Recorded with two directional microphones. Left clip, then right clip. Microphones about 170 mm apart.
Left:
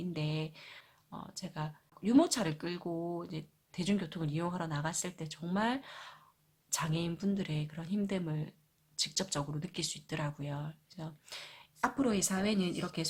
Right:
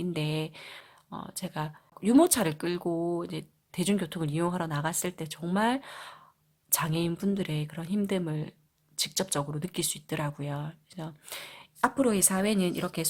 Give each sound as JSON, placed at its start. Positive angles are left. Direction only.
{"t": 0.0, "sound": "speech", "side_deg": -40}